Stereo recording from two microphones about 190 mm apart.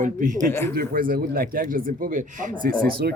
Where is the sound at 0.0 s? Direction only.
40° right (ahead or behind).